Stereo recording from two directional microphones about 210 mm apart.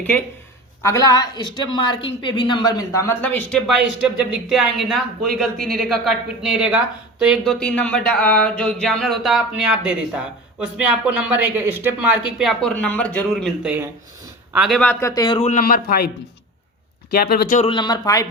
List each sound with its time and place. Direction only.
0.8 s a woman's voice: 15° left (ahead or behind)
15.1 s a woman's voice: 20° left (ahead or behind)
15.4 s speech: 35° left (ahead or behind)
17.1 s speech: 45° left (ahead or behind)
17.6 s speech: 25° left (ahead or behind)